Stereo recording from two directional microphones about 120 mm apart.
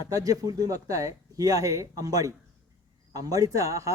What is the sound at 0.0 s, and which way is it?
Speech, 30° right (ahead or behind).